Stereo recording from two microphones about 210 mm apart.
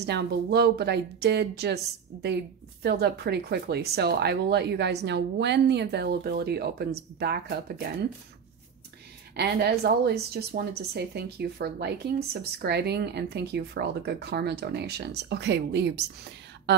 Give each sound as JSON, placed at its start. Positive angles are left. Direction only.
{"t": 0.0, "sound": "speech", "side_deg": -50}
{"t": 9.4, "sound": "speech", "side_deg": -50}